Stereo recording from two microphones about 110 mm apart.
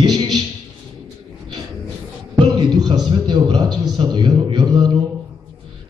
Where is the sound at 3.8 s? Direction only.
45° right (ahead or behind).